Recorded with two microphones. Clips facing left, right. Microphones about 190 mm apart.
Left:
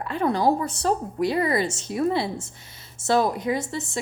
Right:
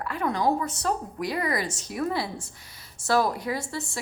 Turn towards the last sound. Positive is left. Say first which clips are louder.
# left 4 dB
turn(degrees=20)  # may be behind; listen again after turning